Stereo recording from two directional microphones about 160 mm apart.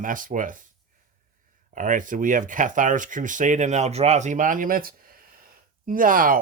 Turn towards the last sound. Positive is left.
turn(degrees=-60)  # may be behind; listen again after turning